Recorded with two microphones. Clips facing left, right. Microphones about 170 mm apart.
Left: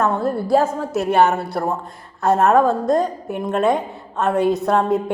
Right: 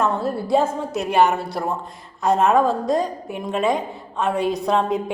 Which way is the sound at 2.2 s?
5° left (ahead or behind).